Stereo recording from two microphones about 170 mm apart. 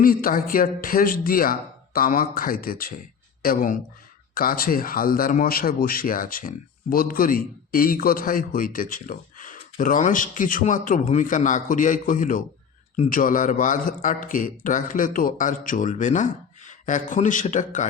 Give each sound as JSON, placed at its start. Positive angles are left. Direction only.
{"t": 0.0, "sound": "a man's voice", "side_deg": 55}